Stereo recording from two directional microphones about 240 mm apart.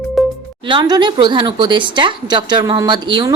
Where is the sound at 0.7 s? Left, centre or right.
Centre.